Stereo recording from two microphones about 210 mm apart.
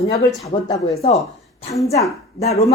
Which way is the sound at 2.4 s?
30° left (ahead or behind).